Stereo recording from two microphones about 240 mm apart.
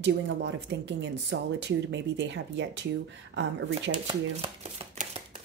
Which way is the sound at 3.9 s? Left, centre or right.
Right.